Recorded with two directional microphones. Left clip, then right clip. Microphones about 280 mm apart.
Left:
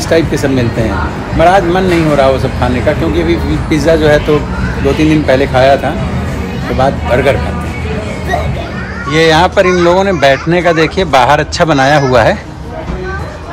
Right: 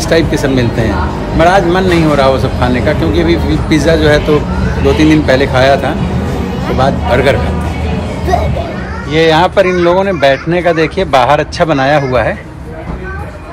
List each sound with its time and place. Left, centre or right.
0.1 s speech: centre
6.8 s speech: centre
9.1 s speech: centre